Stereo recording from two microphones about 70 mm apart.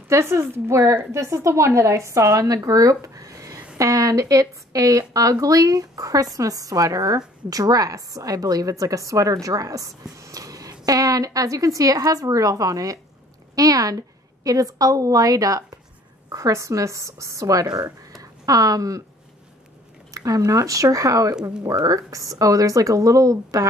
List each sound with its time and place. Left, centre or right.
0.1 s a woman's voice: right
20.2 s a woman's voice: right